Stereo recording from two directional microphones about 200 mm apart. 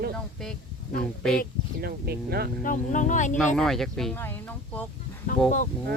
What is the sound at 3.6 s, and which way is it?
Speech, centre (ahead or behind).